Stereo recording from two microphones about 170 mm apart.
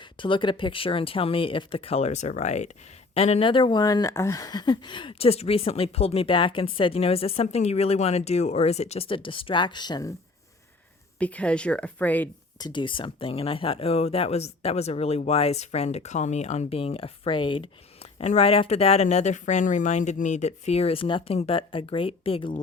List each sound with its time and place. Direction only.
0.0 s speech: 30° left (ahead or behind)
11.2 s speech: 10° left (ahead or behind)
12.5 s speech: 25° left (ahead or behind)